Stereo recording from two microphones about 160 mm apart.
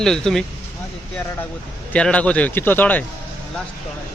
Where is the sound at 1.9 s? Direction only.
5° left (ahead or behind).